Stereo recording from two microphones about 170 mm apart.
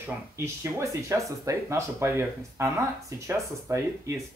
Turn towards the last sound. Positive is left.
turn(degrees=-15)  # may be behind; listen again after turning